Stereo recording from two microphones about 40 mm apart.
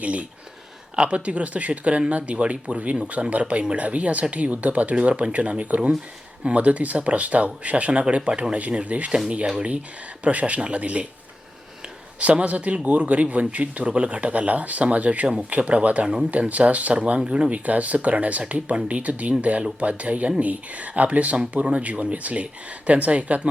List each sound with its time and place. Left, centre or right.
0.0 s speech: right
8.3 s speech: right
8.5 s speech: right
10.2 s speech: right
12.2 s speech: right
17.7 s speech: right